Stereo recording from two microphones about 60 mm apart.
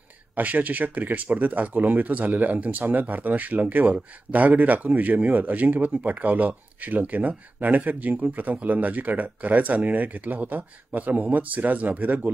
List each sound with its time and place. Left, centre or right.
0.4 s speech: right